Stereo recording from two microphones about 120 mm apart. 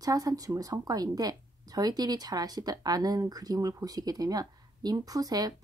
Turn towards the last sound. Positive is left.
turn(degrees=-30)  # may be behind; listen again after turning